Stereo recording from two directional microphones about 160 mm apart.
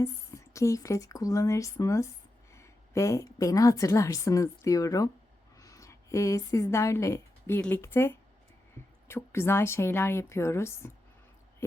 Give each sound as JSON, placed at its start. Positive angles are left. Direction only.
{"t": 0.0, "sound": "a woman's voice", "side_deg": 20}